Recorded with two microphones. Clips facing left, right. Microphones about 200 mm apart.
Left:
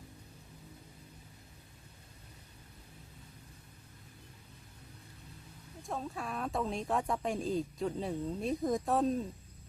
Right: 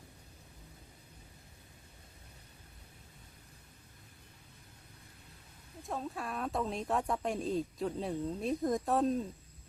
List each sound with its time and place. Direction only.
5.8 s speech: centre (ahead or behind)